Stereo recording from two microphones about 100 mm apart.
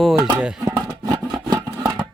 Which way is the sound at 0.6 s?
40° right (ahead or behind).